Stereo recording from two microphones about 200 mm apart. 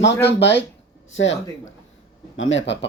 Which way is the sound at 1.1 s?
70° left (ahead or behind).